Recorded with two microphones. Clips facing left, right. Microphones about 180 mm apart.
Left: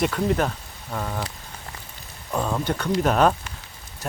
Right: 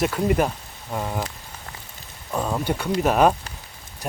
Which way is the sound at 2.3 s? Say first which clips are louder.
Even; 5° right (ahead or behind).